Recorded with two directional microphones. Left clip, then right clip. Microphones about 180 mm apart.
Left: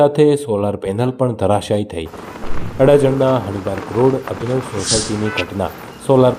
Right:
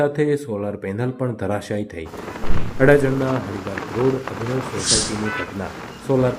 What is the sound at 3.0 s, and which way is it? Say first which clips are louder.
Speech: left 7 dB; centre (ahead or behind).